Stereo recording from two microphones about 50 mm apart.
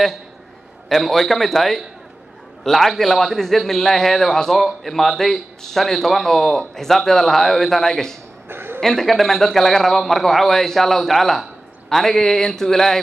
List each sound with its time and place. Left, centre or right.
0.8 s a man's voice: centre
8.5 s a sound: right
8.8 s a man's voice: centre